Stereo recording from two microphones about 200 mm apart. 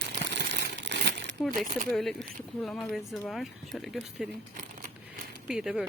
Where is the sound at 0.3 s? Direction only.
60° right (ahead or behind).